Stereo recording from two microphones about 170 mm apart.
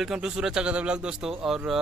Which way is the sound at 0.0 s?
5° right (ahead or behind).